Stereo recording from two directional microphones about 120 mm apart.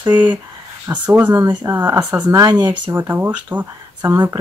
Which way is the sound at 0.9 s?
30° right (ahead or behind).